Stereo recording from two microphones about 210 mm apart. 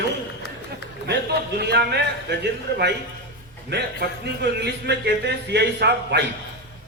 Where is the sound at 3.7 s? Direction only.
55° right (ahead or behind).